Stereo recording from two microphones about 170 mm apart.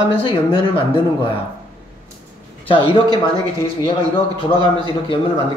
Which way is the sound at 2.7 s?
30° left (ahead or behind).